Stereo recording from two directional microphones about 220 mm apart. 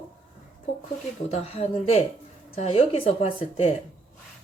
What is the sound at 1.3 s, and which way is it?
Speech, 30° left (ahead or behind).